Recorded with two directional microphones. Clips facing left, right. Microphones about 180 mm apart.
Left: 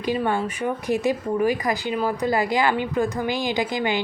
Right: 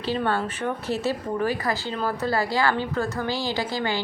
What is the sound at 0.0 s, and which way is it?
Speech, 15° left (ahead or behind).